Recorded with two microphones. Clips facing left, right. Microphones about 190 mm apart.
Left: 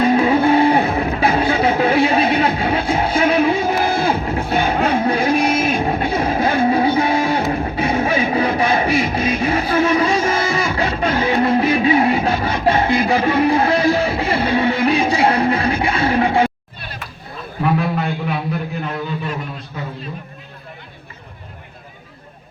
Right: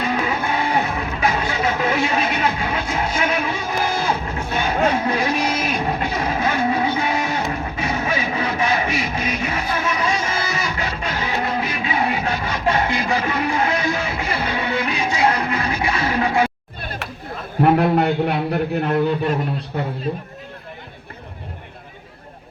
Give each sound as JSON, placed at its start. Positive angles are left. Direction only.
{"t": 0.1, "sound": "music", "side_deg": 30}
{"t": 4.0, "sound": "music", "side_deg": 55}
{"t": 4.4, "sound": "music", "side_deg": 30}
{"t": 5.2, "sound": "music", "side_deg": 50}
{"t": 6.1, "sound": "music", "side_deg": 30}
{"t": 17.6, "sound": "a man's voice", "side_deg": -65}